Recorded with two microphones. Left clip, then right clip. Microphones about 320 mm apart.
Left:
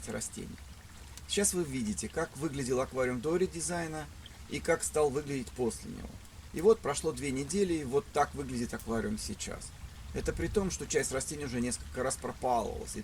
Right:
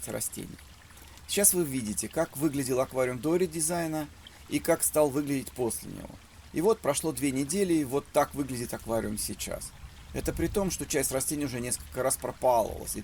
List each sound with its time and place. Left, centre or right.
1.3 s speech: right